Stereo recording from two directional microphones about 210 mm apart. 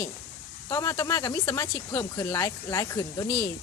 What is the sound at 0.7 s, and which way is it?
A woman's voice, 15° left (ahead or behind).